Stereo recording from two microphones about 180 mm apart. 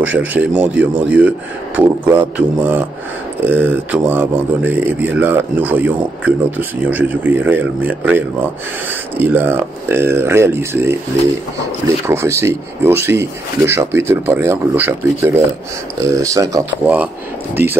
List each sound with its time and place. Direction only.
0.0 s speech: 10° right (ahead or behind)
12.1 s speech: 15° right (ahead or behind)